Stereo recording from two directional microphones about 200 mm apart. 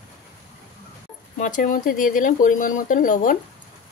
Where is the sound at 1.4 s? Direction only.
40° left (ahead or behind).